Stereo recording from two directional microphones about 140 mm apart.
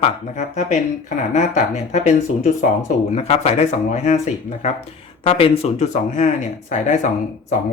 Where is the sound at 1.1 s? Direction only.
55° left (ahead or behind).